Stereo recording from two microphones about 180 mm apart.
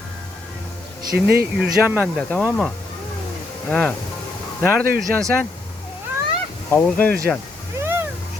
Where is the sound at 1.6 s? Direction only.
10° right (ahead or behind).